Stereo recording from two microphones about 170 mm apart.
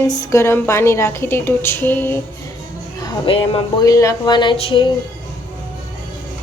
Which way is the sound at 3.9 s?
20° left (ahead or behind).